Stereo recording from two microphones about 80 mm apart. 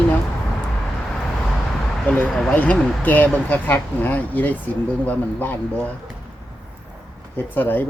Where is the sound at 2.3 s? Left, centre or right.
Centre.